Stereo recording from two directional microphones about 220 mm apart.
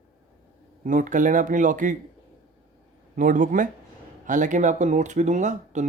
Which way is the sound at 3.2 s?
35° right (ahead or behind).